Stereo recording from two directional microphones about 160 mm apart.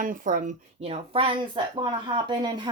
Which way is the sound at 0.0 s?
60° right (ahead or behind).